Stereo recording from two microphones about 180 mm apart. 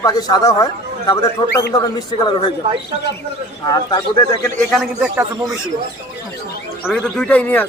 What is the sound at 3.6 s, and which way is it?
Speech, 20° left (ahead or behind).